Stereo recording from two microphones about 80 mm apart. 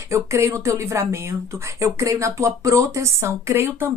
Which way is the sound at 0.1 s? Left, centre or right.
Right.